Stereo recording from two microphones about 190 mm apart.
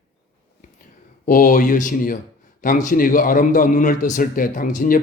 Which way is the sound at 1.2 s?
45° left (ahead or behind).